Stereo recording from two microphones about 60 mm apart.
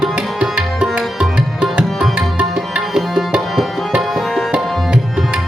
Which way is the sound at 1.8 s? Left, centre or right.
Centre.